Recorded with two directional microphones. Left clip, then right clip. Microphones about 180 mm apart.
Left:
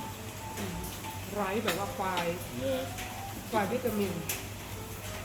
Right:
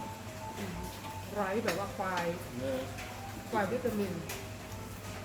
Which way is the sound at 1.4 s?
20° left (ahead or behind).